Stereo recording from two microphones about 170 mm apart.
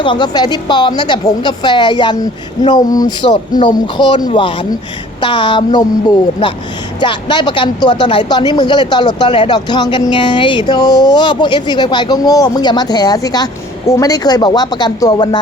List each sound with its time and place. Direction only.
0.0 s speech: 25° left (ahead or behind)